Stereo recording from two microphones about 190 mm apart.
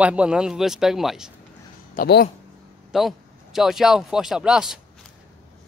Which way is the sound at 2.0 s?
55° left (ahead or behind).